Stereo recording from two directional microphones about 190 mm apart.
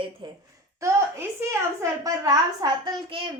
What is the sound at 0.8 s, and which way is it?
A woman's voice, 15° right (ahead or behind).